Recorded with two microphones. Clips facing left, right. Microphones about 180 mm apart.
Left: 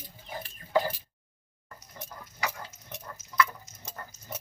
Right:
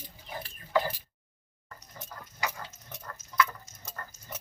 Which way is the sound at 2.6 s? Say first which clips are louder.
Left 1 dB; centre (ahead or behind).